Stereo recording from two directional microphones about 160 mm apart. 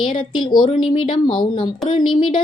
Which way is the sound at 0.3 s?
30° left (ahead or behind).